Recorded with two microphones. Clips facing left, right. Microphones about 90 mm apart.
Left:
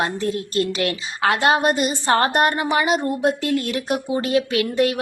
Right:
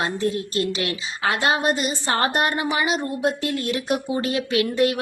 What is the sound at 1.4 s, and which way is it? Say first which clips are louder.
Speech: left 3 dB; 45° left (ahead or behind).